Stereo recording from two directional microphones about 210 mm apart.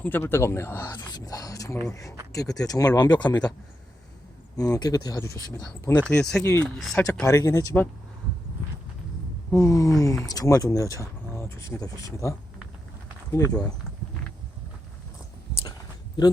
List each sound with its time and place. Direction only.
0.0 s speech: 10° left (ahead or behind)
4.5 s speech: 15° left (ahead or behind)
7.3 s speech: 15° left (ahead or behind)
9.5 s speech: 15° left (ahead or behind)
13.3 s speech: 15° left (ahead or behind)